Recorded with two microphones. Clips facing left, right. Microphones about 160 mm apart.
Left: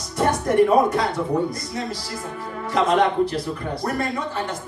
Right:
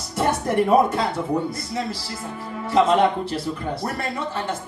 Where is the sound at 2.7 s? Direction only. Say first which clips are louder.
Right 2 dB; 30° right (ahead or behind).